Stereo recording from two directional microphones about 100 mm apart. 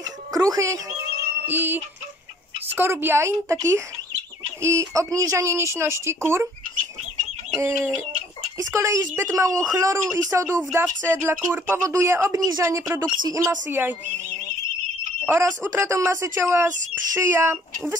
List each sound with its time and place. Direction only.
0.0 s music: 40° right (ahead or behind)
1.5 s speech: 20° right (ahead or behind)
7.5 s a woman's voice: 25° right (ahead or behind)
13.7 s speech: 20° right (ahead or behind)
15.4 s speech: 25° right (ahead or behind)